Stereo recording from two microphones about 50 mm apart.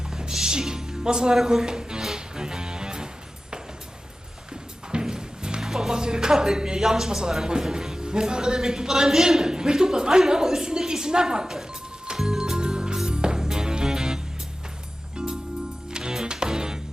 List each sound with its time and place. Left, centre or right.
0.1 s music: centre
4.9 s speech: centre
12.0 s music: centre
15.9 s music: centre